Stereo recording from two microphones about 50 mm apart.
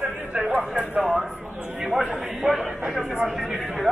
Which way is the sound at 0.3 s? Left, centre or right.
Right.